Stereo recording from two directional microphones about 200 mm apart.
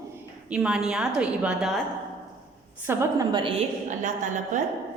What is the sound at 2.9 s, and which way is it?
Speech, 15° right (ahead or behind).